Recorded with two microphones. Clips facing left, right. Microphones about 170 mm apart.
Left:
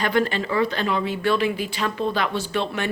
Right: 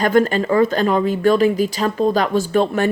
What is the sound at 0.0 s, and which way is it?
A woman's voice, 45° right (ahead or behind).